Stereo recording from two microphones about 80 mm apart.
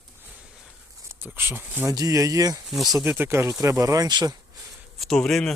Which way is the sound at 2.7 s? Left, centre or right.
Centre.